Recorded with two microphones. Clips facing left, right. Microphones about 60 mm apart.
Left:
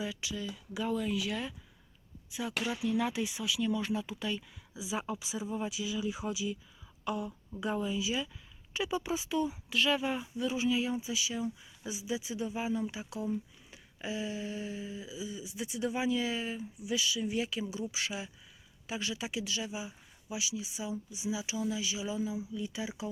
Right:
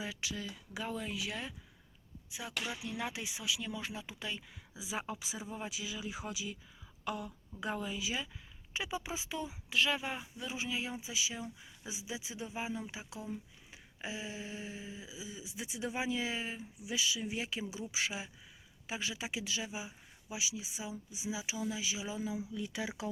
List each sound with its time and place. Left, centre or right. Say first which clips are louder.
0.0 s speech: left 3 dB; right
0.9 s speech: left 6 dB; centre
2.6 s speech: left 10 dB; centre
4.7 s speech: left 4 dB; right
8.7 s speech: left 6 dB; centre
11.4 s speech: left 8 dB; centre
13.1 s a sound: left 9 dB; centre
14.0 s speech: left 5 dB; centre
18.9 s speech: left 2 dB; right
22.5 s speech: left 1 dB; right